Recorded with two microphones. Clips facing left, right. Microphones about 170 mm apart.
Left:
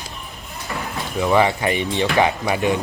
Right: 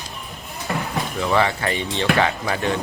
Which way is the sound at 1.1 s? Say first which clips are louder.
Left 4 dB; 15° left (ahead or behind).